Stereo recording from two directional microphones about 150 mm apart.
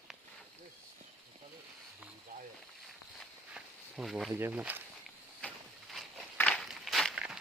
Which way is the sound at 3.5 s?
Centre (ahead or behind).